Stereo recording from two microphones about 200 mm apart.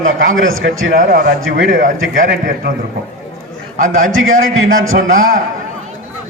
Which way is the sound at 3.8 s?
40° right (ahead or behind).